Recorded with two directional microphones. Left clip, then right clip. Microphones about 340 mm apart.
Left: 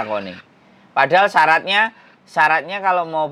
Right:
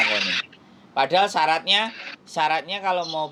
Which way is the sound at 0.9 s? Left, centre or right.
Centre.